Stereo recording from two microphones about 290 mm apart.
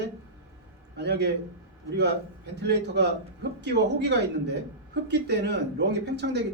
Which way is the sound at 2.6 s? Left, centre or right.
Right.